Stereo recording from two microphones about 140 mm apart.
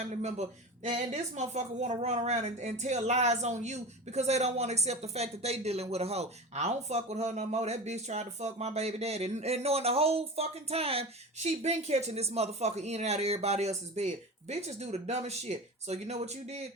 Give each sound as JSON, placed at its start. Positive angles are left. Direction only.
{"t": 0.2, "sound": "speech", "side_deg": -55}